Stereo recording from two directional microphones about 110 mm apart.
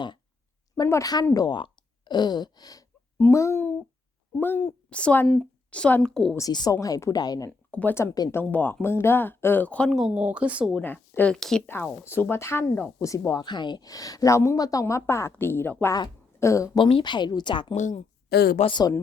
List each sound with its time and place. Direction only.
0.9 s speech: 30° left (ahead or behind)
3.2 s speech: 25° left (ahead or behind); by 6.3 s 5° left (ahead or behind)
6.5 s speech: 40° left (ahead or behind)
7.7 s speech: 15° left (ahead or behind)
7.9 s speech: 25° left (ahead or behind)
10.2 s speech: 10° right (ahead or behind)
10.8 s speech: 15° left (ahead or behind)
11.3 s speech: 5° left (ahead or behind)
11.6 s a woman's voice: 20° left (ahead or behind)
16.7 s speech: 45° left (ahead or behind)
18.7 s speech: 40° left (ahead or behind)